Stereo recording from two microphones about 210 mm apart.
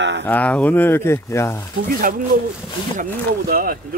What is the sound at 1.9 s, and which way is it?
Speech, 40° right (ahead or behind).